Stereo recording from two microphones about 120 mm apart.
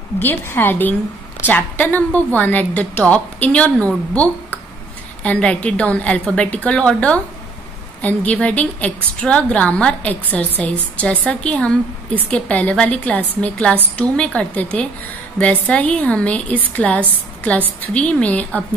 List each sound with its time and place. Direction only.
0.2 s a woman's voice: 15° left (ahead or behind)